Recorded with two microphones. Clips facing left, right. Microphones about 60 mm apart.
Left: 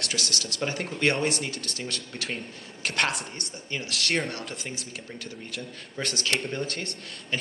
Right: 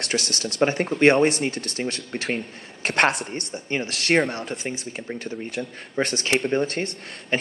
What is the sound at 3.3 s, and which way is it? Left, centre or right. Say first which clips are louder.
Speech: right 7 dB; right.